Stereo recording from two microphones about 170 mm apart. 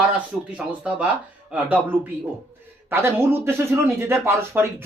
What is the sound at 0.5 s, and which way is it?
Speech, 5° right (ahead or behind).